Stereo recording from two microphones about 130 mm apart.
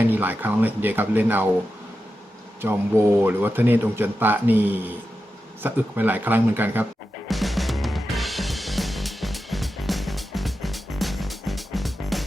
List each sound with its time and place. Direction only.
0.0 s a man's voice: 15° right (ahead or behind)
2.6 s a man's voice: 20° right (ahead or behind)
7.3 s drum kit: centre (ahead or behind)